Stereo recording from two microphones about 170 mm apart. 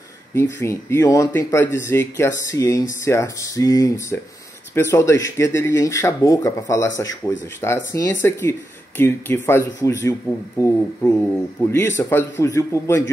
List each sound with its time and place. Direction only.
0.3 s speech: 15° left (ahead or behind)